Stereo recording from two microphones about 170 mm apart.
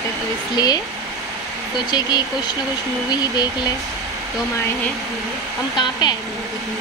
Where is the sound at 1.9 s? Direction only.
25° left (ahead or behind).